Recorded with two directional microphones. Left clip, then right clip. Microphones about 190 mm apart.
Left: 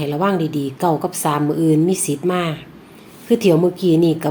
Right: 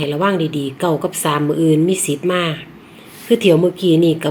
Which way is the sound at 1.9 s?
50° left (ahead or behind).